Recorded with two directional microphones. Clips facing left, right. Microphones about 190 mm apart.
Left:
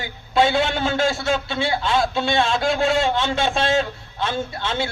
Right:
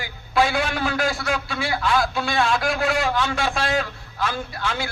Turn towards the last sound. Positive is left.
turn(degrees=25)  # may be behind; listen again after turning